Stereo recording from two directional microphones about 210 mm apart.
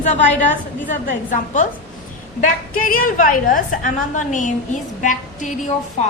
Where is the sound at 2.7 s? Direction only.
40° left (ahead or behind).